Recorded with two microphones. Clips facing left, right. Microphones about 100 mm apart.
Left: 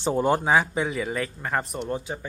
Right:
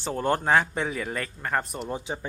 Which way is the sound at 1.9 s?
15° right (ahead or behind).